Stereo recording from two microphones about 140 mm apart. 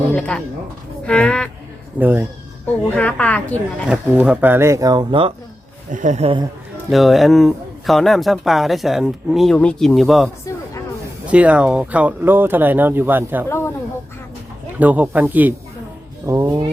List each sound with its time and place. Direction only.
0.1 s a woman's voice: 10° left (ahead or behind)
2.0 s speech: 10° right (ahead or behind)
2.9 s a woman's voice: 10° left (ahead or behind)
4.1 s speech: 10° right (ahead or behind); by 5.3 s 35° right (ahead or behind)
5.9 s speech: 60° right (ahead or behind)
6.9 s speech: centre (ahead or behind)
11.3 s speech: 10° right (ahead or behind)
13.5 s a sound: 20° left (ahead or behind)
14.8 s speech: 10° right (ahead or behind)